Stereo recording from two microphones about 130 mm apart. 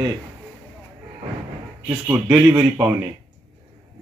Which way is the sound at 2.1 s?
20° right (ahead or behind).